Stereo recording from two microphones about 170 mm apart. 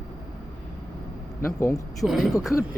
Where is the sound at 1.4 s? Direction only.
15° left (ahead or behind).